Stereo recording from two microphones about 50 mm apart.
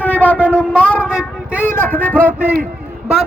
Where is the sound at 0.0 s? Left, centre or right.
Left.